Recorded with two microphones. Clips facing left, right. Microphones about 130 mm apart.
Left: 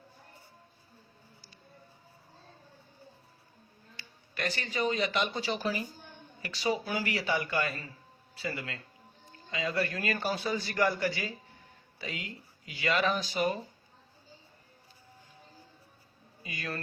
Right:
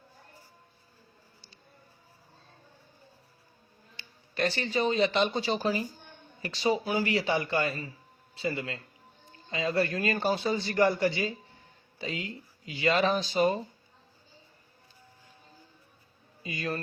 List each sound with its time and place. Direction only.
3.9 s a man's voice: 30° right (ahead or behind)
16.4 s a man's voice: 25° right (ahead or behind)